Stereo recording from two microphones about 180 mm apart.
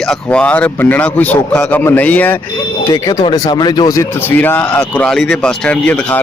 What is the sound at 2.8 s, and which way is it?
Speech, 20° left (ahead or behind).